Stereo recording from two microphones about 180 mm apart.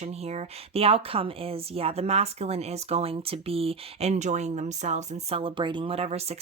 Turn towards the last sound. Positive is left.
turn(degrees=-35)  # may be behind; listen again after turning